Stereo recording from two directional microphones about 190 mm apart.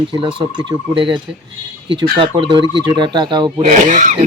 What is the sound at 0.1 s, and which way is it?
Speech, 25° right (ahead or behind).